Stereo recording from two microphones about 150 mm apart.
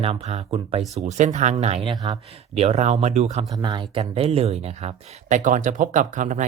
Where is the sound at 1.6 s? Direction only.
40° right (ahead or behind).